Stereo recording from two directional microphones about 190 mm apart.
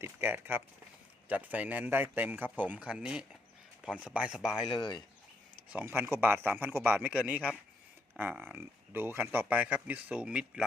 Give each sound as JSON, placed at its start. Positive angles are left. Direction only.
{"t": 0.0, "sound": "speech", "side_deg": -10}
{"t": 4.7, "sound": "speech", "side_deg": 25}
{"t": 5.6, "sound": "speech", "side_deg": -10}